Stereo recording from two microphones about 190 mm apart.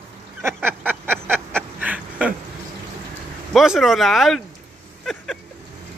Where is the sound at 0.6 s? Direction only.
10° right (ahead or behind).